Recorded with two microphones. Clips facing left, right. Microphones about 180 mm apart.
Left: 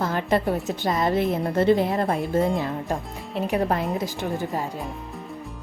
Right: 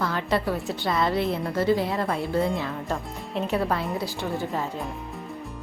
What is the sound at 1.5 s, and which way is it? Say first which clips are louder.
Speech: left 4 dB; 25° left (ahead or behind).